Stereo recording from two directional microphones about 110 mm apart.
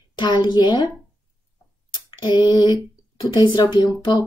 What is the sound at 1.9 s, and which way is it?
Speech, 40° left (ahead or behind).